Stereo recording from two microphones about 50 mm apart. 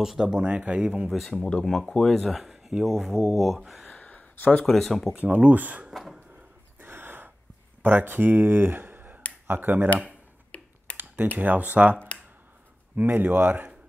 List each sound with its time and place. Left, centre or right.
0.0 s speech: centre
1.6 s speech: centre
3.8 s a sound: left
4.6 s speech: centre
5.1 s speech: right
6.8 s gasp: right
7.8 s speech: right
10.5 s finger snapping: left
10.9 s computer keyboard: left
11.3 s speech: right